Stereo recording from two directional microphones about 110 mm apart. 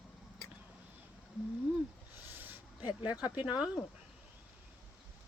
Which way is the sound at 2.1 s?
20° right (ahead or behind).